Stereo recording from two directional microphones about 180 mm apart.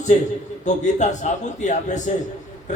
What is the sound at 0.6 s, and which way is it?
A man's voice, 40° left (ahead or behind).